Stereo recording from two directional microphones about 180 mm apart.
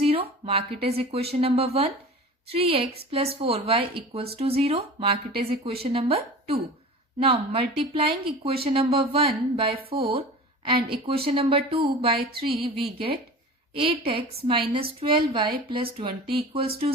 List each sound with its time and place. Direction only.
0.0 s speech: 35° right (ahead or behind)
7.2 s speech: 30° right (ahead or behind)
10.1 s a sound: 30° right (ahead or behind)
10.8 s speech: 30° right (ahead or behind)